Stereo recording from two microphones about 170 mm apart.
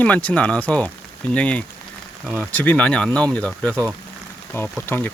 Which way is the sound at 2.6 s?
5° left (ahead or behind).